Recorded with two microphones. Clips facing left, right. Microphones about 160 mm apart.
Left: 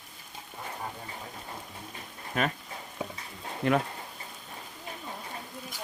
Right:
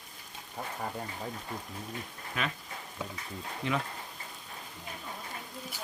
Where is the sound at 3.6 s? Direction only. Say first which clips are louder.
Left 7 dB; 55° left (ahead or behind).